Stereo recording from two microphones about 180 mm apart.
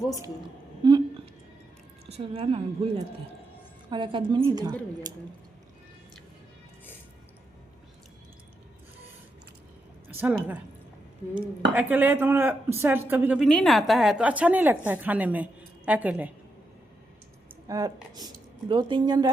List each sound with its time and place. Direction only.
0.9 s a sound: 25° right (ahead or behind)
2.0 s a woman's voice: 35° right (ahead or behind)
10.1 s a woman's voice: 10° right (ahead or behind)
17.7 s a woman's voice: 20° right (ahead or behind)